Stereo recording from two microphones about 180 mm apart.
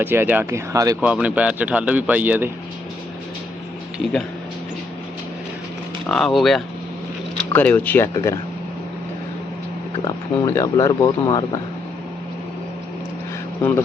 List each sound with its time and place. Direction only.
0.0 s a man's voice: 10° right (ahead or behind)
1.0 s a man's voice: 5° right (ahead or behind)
6.1 s speech: centre (ahead or behind)
10.0 s speech: 20° left (ahead or behind)
13.6 s speech: 10° left (ahead or behind)